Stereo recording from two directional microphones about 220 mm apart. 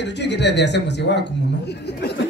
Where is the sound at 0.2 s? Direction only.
50° left (ahead or behind).